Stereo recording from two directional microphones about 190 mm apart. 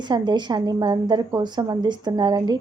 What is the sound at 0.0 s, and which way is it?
Speech, 25° right (ahead or behind).